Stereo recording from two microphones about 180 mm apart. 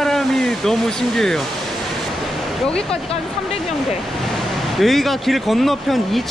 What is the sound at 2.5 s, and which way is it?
Speech, 5° left (ahead or behind).